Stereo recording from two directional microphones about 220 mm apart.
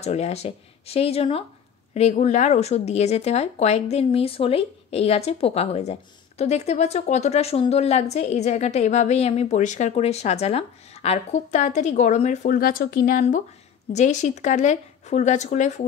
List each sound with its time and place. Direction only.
0.0 s speech: 30° left (ahead or behind)